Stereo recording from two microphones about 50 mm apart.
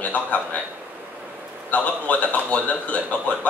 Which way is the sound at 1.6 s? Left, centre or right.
Left.